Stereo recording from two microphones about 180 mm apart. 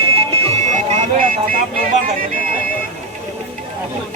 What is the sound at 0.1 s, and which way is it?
Vehicle, 35° right (ahead or behind).